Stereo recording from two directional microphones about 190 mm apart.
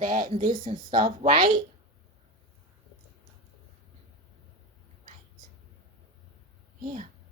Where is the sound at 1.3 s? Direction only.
25° right (ahead or behind).